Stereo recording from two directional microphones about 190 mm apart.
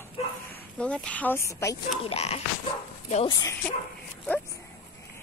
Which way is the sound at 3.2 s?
20° left (ahead or behind).